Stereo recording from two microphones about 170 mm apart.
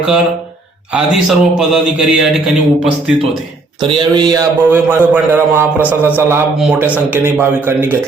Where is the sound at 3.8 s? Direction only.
25° right (ahead or behind).